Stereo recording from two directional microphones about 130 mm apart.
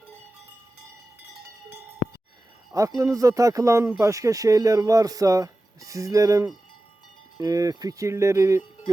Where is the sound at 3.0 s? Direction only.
25° right (ahead or behind).